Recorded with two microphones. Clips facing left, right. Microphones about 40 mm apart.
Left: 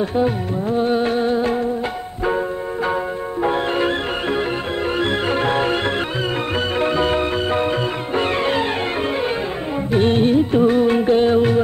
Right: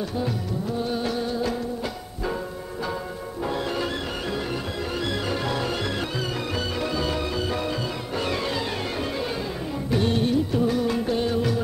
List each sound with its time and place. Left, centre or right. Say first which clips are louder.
0.0 s music: left 9 dB; left
9.8 s music: left 7 dB; left